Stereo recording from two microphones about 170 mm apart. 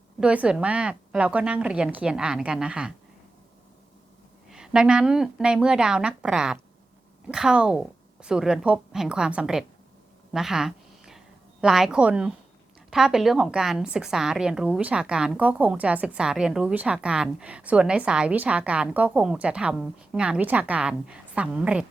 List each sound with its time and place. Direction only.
0.2 s speech: 5° right (ahead or behind)
4.4 s speech: 5° right (ahead or behind)
10.3 s a sound: centre (ahead or behind)
11.6 s speech: centre (ahead or behind)